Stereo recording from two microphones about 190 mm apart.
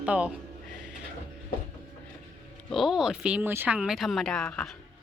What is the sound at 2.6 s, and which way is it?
Speech, centre (ahead or behind).